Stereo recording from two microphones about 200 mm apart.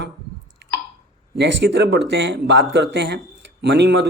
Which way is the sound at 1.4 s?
60° right (ahead or behind).